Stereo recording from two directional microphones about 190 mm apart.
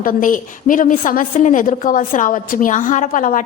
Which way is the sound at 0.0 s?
45° left (ahead or behind).